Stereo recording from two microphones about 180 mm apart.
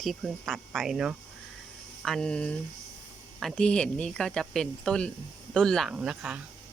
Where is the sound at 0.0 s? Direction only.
Centre (ahead or behind).